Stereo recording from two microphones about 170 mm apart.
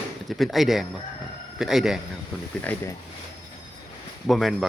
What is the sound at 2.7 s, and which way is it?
Speech, 10° left (ahead or behind).